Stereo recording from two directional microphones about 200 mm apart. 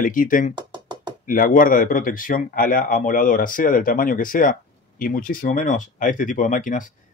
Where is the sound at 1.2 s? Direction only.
45° left (ahead or behind).